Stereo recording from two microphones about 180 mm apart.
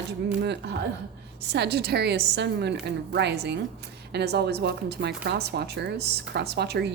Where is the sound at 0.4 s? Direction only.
70° right (ahead or behind).